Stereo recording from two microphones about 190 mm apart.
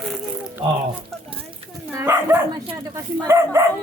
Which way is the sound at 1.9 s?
10° right (ahead or behind).